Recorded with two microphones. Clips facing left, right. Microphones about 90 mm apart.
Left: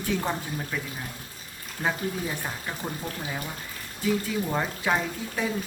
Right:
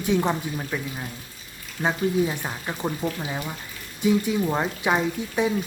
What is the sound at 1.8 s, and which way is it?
Speech, 20° right (ahead or behind).